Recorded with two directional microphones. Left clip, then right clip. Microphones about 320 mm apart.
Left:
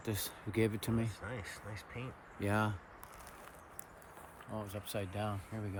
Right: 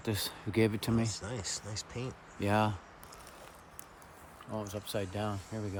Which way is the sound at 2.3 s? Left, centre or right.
Right.